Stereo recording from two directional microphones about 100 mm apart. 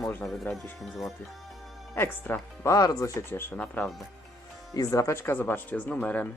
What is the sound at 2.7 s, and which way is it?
Speech, 35° left (ahead or behind).